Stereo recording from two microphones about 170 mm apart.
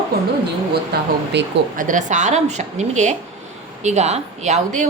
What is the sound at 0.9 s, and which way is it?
Speech, 70° right (ahead or behind).